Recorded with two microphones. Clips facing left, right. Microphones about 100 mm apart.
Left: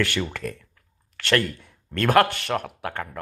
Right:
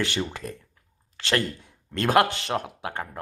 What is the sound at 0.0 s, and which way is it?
Speech, 20° right (ahead or behind).